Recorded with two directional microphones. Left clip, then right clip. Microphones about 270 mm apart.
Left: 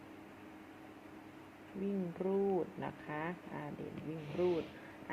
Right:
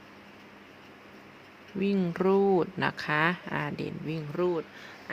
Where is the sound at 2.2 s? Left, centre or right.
Right.